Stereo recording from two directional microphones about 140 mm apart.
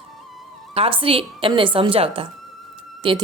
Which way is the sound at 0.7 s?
40° right (ahead or behind).